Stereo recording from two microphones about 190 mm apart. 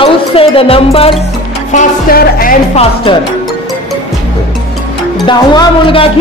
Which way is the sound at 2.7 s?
30° left (ahead or behind).